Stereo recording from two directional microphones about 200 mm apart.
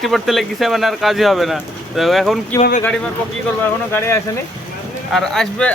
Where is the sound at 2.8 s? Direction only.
5° left (ahead or behind).